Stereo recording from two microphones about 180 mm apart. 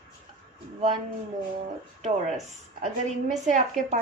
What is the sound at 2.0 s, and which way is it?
A woman's voice, 40° right (ahead or behind).